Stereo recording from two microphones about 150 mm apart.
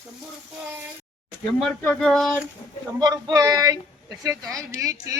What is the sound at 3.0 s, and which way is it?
Speech, 25° right (ahead or behind).